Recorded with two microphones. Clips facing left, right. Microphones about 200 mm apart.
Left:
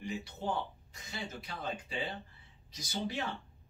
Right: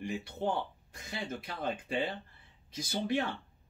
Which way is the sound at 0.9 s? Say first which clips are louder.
Right 4 dB; 55° right (ahead or behind).